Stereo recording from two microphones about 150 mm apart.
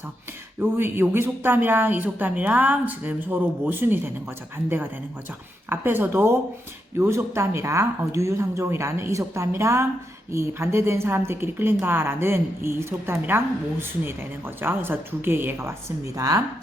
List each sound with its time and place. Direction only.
0.6 s a woman's voice: 15° right (ahead or behind)
5.6 s a woman's voice: 15° right (ahead or behind)